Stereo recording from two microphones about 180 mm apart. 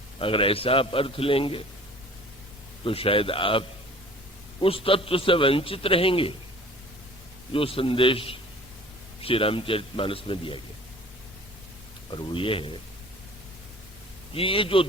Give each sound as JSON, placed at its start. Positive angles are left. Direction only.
{"t": 0.2, "sound": "a man's voice", "side_deg": 30}
{"t": 2.8, "sound": "a man's voice", "side_deg": 30}
{"t": 7.5, "sound": "a man's voice", "side_deg": 30}
{"t": 12.1, "sound": "a man's voice", "side_deg": 30}
{"t": 14.3, "sound": "a man's voice", "side_deg": 30}